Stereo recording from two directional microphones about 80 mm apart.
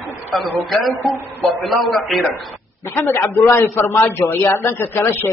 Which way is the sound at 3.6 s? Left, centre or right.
Left.